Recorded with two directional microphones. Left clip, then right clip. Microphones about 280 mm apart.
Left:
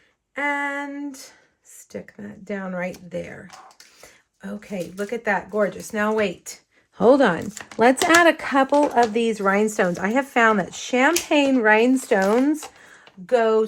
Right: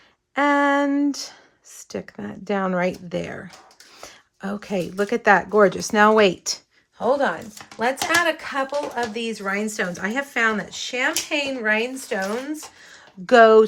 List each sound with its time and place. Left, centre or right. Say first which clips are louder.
0.3 s female singing: right 6 dB; centre
2.5 s speech: right 6 dB; centre
7.8 s speech: left 5 dB; centre
13.2 s speech: right 6 dB; right